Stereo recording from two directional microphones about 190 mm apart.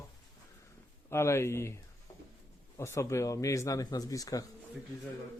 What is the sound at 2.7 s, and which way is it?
Speech, 15° left (ahead or behind).